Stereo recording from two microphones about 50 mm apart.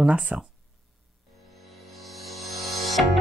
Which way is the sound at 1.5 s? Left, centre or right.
Centre.